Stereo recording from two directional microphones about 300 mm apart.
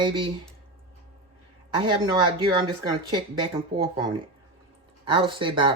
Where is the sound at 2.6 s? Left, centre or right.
Centre.